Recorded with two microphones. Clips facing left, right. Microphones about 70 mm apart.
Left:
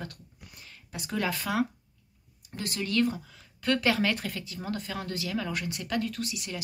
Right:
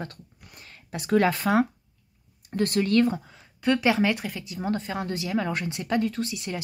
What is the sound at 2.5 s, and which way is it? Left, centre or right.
Speech, right.